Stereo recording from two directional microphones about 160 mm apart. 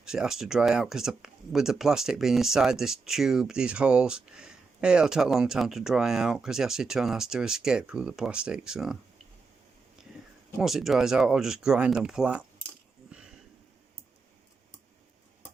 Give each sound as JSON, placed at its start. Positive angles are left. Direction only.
{"t": 0.0, "sound": "speech", "side_deg": -5}
{"t": 10.6, "sound": "speech", "side_deg": 0}
{"t": 13.1, "sound": "a sound", "side_deg": -5}